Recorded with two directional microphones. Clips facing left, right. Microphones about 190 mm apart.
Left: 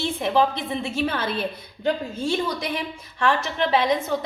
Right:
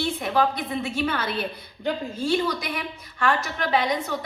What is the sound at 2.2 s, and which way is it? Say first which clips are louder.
A woman's voice: right 1 dB; 25° left (ahead or behind).